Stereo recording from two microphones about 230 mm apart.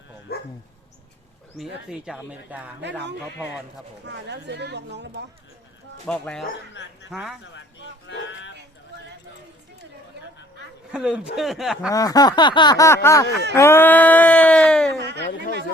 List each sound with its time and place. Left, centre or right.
0.3 s dog: left
1.5 s speech: centre
4.0 s speech: right
6.1 s speech: centre
8.0 s music: left
10.9 s speech: centre
11.9 s a sound: centre